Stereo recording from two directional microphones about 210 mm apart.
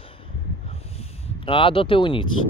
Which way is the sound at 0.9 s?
25° left (ahead or behind).